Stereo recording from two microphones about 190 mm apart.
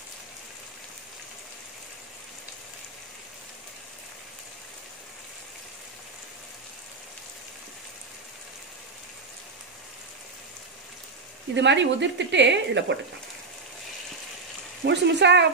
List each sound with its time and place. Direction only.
11.5 s speech: 70° right (ahead or behind)
14.9 s speech: 65° right (ahead or behind)